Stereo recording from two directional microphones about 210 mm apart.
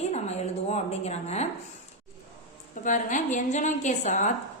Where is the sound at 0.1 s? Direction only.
30° left (ahead or behind).